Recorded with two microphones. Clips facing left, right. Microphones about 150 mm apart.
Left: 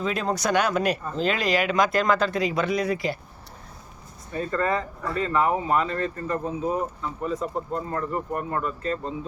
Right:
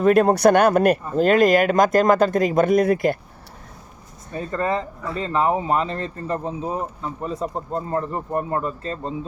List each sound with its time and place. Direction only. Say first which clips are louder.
0.0 s speech: right 11 dB; 55° right (ahead or behind)
4.4 s speech: right 1 dB; 25° right (ahead or behind)